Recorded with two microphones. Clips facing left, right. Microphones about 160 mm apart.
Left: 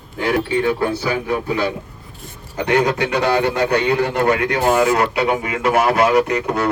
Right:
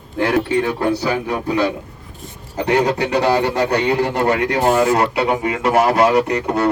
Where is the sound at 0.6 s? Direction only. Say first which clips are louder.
Even; 35° right (ahead or behind).